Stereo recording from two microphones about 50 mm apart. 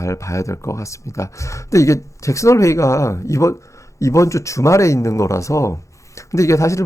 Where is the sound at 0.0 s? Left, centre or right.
Left.